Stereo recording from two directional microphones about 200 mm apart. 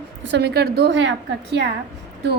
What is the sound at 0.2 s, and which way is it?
A woman's voice, 60° right (ahead or behind).